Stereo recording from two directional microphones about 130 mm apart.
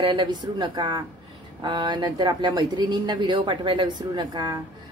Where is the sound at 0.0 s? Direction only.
35° right (ahead or behind).